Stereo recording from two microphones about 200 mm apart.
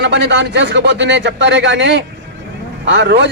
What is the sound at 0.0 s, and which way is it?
Speech, 60° right (ahead or behind).